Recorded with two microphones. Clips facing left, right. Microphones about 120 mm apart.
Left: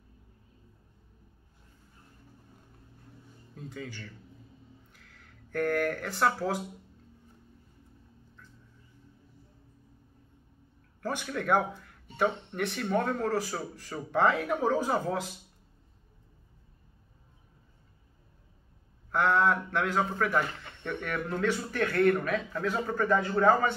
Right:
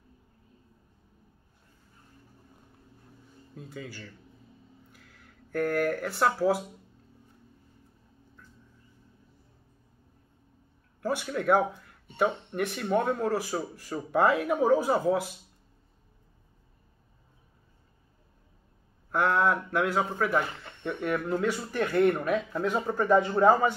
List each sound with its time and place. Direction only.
3.5 s speech: 5° right (ahead or behind)
11.0 s speech: 10° right (ahead or behind)
19.0 s speech: 5° right (ahead or behind)
22.6 s speech: 20° right (ahead or behind)